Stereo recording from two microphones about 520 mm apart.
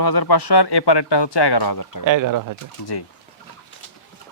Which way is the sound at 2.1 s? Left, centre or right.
Right.